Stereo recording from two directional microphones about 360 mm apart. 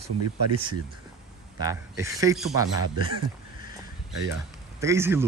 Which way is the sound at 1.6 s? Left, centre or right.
Centre.